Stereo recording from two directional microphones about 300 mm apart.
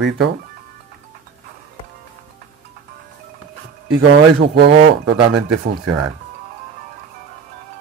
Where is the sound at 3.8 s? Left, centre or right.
Right.